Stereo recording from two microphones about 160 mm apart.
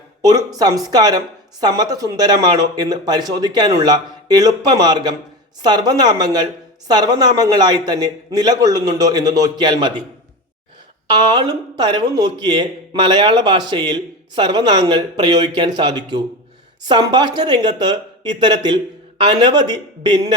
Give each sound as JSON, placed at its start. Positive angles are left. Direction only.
{"t": 0.2, "sound": "speech", "side_deg": -20}
{"t": 11.1, "sound": "speech", "side_deg": -25}